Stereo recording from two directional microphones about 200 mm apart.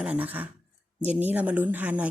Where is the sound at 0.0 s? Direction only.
5° right (ahead or behind).